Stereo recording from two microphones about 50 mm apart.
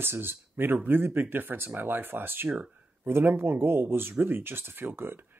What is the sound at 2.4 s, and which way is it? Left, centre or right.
Speech, centre.